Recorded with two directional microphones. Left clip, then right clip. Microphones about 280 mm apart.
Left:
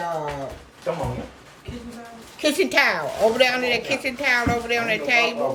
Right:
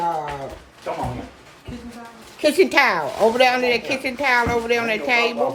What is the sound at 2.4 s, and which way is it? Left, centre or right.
Speech, centre.